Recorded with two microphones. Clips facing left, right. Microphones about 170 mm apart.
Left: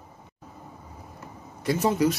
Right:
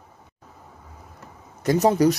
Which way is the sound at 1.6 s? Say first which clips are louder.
Right 5 dB; 40° right (ahead or behind).